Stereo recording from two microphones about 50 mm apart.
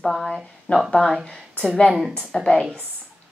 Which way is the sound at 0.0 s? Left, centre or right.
Centre.